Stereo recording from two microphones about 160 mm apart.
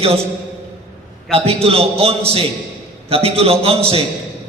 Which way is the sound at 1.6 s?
40° right (ahead or behind).